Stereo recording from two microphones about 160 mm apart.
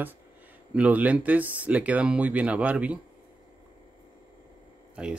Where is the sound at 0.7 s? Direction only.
10° right (ahead or behind).